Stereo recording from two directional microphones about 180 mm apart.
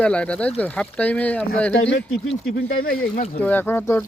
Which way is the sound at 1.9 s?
85° left.